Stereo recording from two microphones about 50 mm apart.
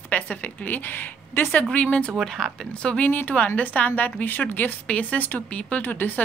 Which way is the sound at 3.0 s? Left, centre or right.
Left.